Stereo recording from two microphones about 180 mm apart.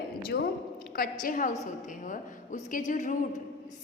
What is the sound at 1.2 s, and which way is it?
A woman's voice, 50° left (ahead or behind).